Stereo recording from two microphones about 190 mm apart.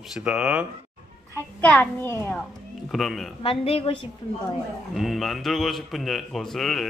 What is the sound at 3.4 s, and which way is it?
Speech, 30° left (ahead or behind).